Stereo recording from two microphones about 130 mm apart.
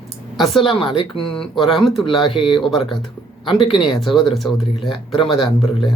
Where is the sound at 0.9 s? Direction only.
40° left (ahead or behind).